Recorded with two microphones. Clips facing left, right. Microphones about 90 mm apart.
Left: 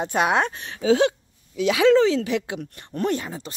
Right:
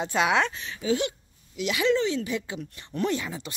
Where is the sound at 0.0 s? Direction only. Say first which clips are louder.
Left 3 dB; 50° left (ahead or behind).